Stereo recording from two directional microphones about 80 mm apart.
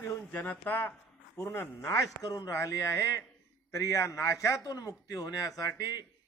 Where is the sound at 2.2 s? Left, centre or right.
Left.